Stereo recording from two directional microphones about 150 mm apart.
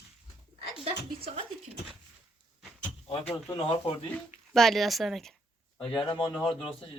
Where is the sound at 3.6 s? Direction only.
35° left (ahead or behind).